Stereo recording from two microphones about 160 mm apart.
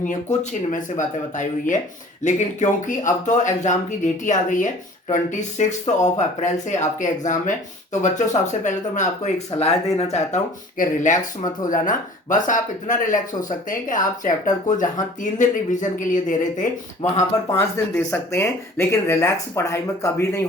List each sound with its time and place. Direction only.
0.0 s speech: 50° left (ahead or behind)
17.5 s speech: 15° left (ahead or behind)